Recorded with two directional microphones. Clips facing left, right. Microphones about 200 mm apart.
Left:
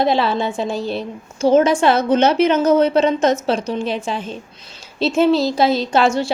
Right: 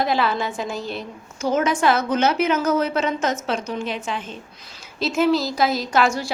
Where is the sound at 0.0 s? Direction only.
30° left (ahead or behind).